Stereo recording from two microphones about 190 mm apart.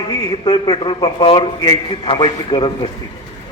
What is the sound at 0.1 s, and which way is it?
A man's voice, 20° left (ahead or behind).